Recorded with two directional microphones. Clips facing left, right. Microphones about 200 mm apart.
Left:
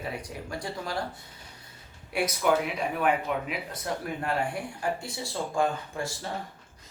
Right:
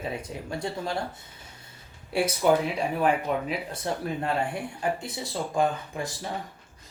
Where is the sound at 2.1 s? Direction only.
30° right (ahead or behind).